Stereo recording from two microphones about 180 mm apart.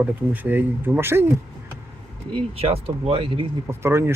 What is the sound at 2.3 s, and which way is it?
Speech, 30° right (ahead or behind).